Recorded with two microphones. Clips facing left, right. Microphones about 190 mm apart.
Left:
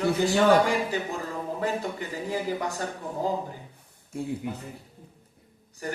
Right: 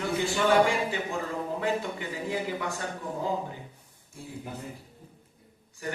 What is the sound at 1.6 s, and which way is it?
Speech, 40° left (ahead or behind).